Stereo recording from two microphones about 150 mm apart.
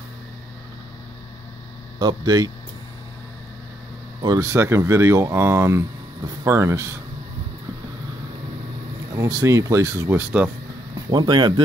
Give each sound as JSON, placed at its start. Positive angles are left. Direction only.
{"t": 2.0, "sound": "speech", "side_deg": -25}
{"t": 4.2, "sound": "speech", "side_deg": -25}
{"t": 9.1, "sound": "speech", "side_deg": -20}
{"t": 11.1, "sound": "speech", "side_deg": -30}